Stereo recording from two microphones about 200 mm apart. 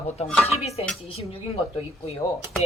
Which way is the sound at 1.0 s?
30° left (ahead or behind).